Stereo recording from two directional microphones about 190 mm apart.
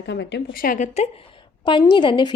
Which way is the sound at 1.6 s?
25° left (ahead or behind).